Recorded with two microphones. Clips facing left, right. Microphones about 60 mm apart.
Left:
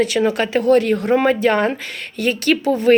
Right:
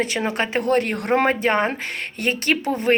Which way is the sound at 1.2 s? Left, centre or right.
Right.